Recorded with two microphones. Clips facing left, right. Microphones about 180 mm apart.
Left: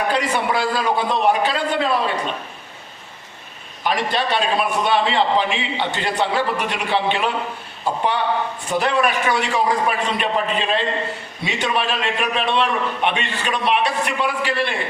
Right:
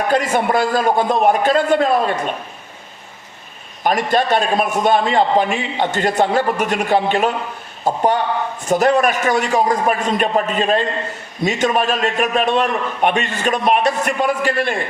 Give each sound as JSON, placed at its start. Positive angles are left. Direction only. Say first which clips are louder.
{"t": 0.1, "sound": "a man's voice", "louder": "right 4 dB", "side_deg": -45}
{"t": 3.8, "sound": "a man's voice", "louder": "right 5 dB", "side_deg": -45}